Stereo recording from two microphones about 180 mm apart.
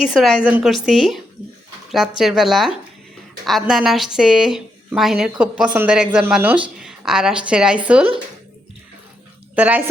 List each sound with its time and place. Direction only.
0.1 s a woman's voice: centre (ahead or behind)
9.6 s a woman's voice: 10° right (ahead or behind)